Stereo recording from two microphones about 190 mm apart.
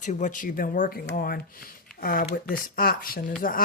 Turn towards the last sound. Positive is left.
turn(degrees=50)  # may be behind; listen again after turning